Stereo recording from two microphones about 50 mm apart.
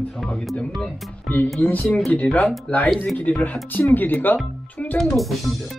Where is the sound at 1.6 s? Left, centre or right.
Left.